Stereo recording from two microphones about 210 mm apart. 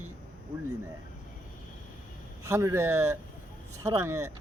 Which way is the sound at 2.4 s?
15° right (ahead or behind).